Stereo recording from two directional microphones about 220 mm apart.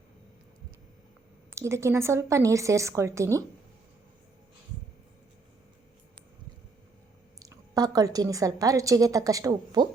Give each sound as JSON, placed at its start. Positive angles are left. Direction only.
{"t": 1.5, "sound": "a woman's voice", "side_deg": -10}
{"t": 7.3, "sound": "a woman's voice", "side_deg": -15}